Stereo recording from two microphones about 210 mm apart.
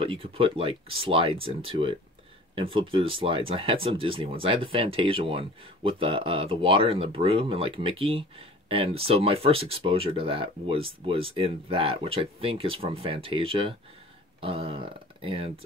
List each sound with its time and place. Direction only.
0.0 s speech: 25° right (ahead or behind)